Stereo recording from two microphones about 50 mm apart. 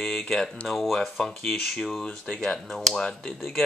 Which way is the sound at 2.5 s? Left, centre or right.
Centre.